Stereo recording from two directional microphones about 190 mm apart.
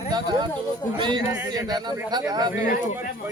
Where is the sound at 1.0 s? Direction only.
25° right (ahead or behind).